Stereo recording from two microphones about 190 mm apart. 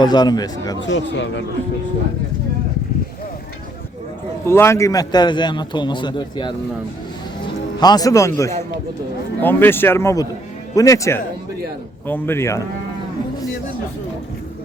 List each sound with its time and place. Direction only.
0.0 s a man's voice: 20° left (ahead or behind)
0.8 s speech: 70° left (ahead or behind)
4.4 s a man's voice: 15° left (ahead or behind)
7.4 s music: 20° left (ahead or behind)
9.4 s speech: 10° left (ahead or behind)